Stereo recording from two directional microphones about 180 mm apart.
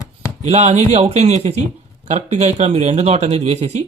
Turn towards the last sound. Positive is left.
turn(degrees=-35)  # may be behind; listen again after turning